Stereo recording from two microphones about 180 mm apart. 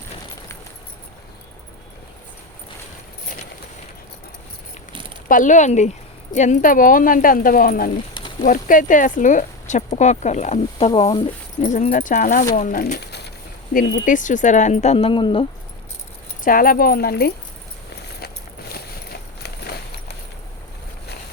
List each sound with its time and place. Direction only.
4.9 s keys jangling: 25° right (ahead or behind)
5.3 s speech: 45° left (ahead or behind)
8.1 s a sound: 30° left (ahead or behind)
8.4 s speech: 45° left (ahead or behind); by 11.2 s 30° left (ahead or behind)
11.6 s speech: 45° left (ahead or behind); by 13.3 s 65° left (ahead or behind)
13.7 s speech: 50° left (ahead or behind); by 15.4 s 30° left (ahead or behind)
16.4 s speech: 50° left (ahead or behind)
18.2 s walk: 60° left (ahead or behind)
19.4 s a sound: 65° left (ahead or behind)